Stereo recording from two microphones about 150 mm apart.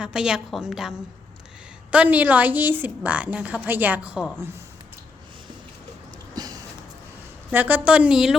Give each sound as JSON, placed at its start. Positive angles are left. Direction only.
{"t": 0.0, "sound": "a woman's voice", "side_deg": -5}
{"t": 6.3, "sound": "a sound", "side_deg": -25}
{"t": 7.5, "sound": "a woman's voice", "side_deg": -10}